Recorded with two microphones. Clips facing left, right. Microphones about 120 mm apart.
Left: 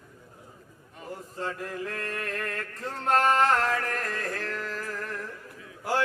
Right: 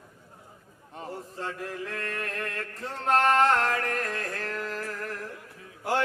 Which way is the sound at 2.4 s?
Centre (ahead or behind).